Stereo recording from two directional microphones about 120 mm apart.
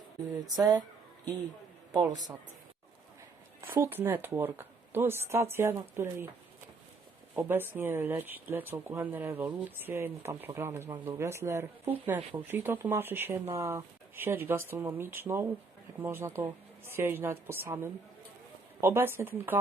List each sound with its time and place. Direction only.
0.4 s speech: 30° right (ahead or behind)
3.6 s speech: 20° right (ahead or behind)
7.3 s speech: 20° right (ahead or behind)